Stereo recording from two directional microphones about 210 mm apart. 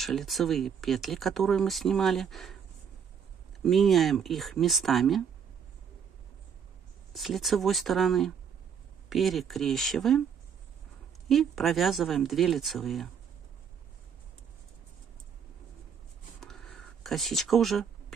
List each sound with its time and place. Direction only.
0.0 s speech: centre (ahead or behind)
3.6 s speech: centre (ahead or behind)
7.2 s speech: centre (ahead or behind)
11.2 s speech: centre (ahead or behind)
16.3 s a sound: centre (ahead or behind)